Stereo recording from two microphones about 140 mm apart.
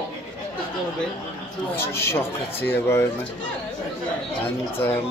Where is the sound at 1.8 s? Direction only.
20° left (ahead or behind).